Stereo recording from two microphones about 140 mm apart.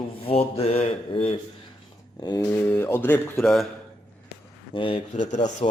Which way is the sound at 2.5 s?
15° left (ahead or behind).